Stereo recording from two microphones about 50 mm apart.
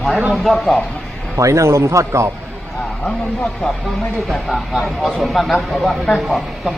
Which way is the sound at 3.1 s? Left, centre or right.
Centre.